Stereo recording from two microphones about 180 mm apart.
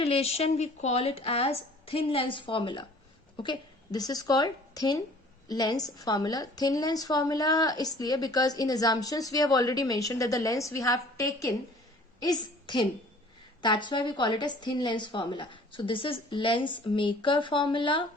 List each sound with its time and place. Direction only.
0.0 s a woman's voice: 35° left (ahead or behind)